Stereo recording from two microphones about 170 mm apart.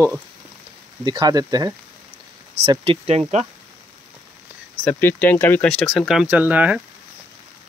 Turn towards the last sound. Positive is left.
turn(degrees=-10)  # may be behind; listen again after turning